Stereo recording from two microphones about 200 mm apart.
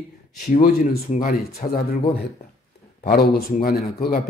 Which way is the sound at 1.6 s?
30° left (ahead or behind).